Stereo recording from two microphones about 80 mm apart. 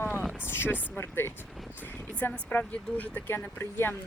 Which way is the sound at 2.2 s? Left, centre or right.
Left.